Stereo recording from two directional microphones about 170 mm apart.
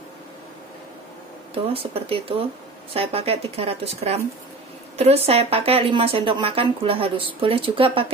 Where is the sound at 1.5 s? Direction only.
35° right (ahead or behind).